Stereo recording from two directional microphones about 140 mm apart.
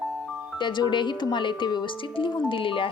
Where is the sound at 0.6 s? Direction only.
35° left (ahead or behind).